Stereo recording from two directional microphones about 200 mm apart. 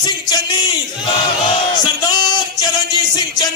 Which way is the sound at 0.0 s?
20° left (ahead or behind).